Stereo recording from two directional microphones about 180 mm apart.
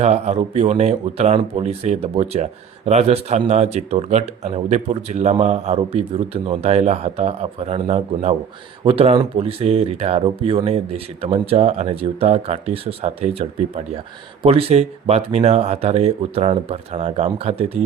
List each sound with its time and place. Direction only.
0.0 s speech: 35° right (ahead or behind)